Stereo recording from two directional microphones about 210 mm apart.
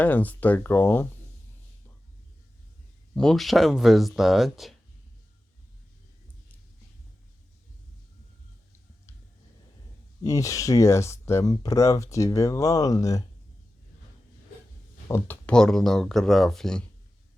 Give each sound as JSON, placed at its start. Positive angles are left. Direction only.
{"t": 0.0, "sound": "speech", "side_deg": 10}
{"t": 3.2, "sound": "speech", "side_deg": 0}
{"t": 10.2, "sound": "speech", "side_deg": 15}
{"t": 15.0, "sound": "speech", "side_deg": 10}